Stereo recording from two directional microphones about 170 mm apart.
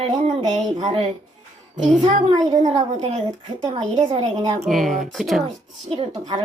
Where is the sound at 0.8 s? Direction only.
35° right (ahead or behind).